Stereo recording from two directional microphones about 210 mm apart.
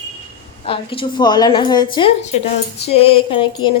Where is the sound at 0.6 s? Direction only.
25° left (ahead or behind).